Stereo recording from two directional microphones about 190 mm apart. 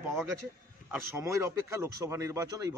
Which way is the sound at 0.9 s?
15° right (ahead or behind).